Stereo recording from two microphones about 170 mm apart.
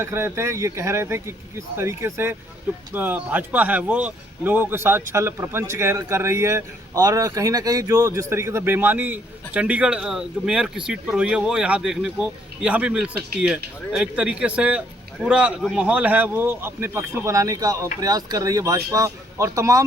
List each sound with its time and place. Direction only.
0.0 s speech: 15° right (ahead or behind)